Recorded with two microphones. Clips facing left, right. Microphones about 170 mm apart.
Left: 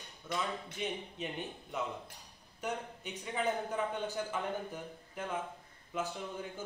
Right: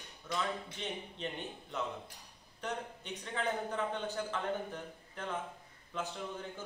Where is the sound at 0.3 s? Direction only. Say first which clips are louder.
Even; 5° left (ahead or behind).